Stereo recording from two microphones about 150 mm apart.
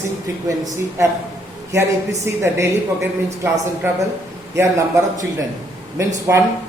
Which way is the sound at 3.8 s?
15° right (ahead or behind).